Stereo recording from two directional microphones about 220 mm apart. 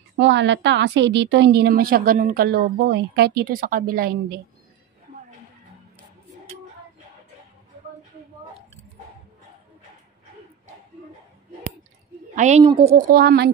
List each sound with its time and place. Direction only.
0.2 s a woman's voice: 55° right (ahead or behind)
12.4 s a woman's voice: 30° right (ahead or behind)
13.1 s a woman's voice: 45° right (ahead or behind)